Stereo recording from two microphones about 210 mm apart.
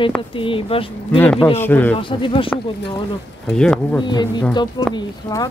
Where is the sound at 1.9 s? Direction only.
25° left (ahead or behind).